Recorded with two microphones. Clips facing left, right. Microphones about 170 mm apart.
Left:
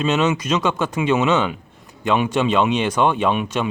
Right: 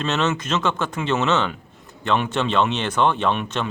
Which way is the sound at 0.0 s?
10° left (ahead or behind).